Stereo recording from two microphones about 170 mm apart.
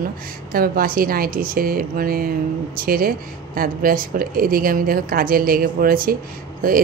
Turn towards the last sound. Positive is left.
turn(degrees=-55)  # may be behind; listen again after turning